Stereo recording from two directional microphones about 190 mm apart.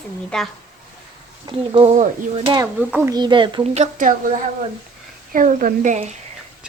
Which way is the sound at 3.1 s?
25° right (ahead or behind).